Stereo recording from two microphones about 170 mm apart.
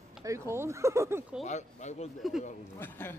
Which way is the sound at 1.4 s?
45° left (ahead or behind).